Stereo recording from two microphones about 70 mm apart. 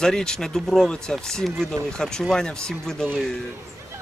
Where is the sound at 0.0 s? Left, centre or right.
Centre.